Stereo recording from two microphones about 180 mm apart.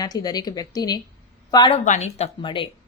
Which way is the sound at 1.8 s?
40° left (ahead or behind).